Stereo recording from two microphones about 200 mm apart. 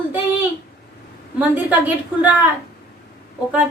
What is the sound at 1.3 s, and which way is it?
Speech, 10° right (ahead or behind).